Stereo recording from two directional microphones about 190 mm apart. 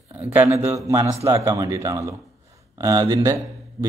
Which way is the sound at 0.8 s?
15° right (ahead or behind).